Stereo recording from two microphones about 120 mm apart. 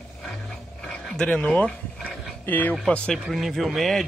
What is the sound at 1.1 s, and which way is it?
Speech, 5° left (ahead or behind).